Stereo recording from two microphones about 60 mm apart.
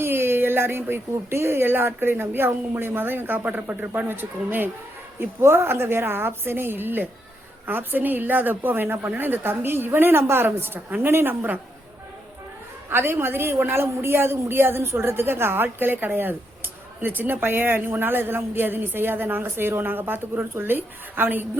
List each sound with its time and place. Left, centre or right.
0.0 s speech: right
5.2 s speech: right
12.9 s speech: right